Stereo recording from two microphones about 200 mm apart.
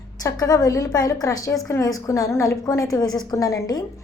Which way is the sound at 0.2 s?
20° left (ahead or behind).